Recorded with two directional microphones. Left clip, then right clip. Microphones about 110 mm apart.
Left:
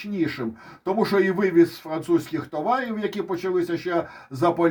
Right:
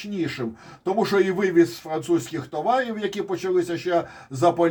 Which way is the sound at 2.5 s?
10° right (ahead or behind).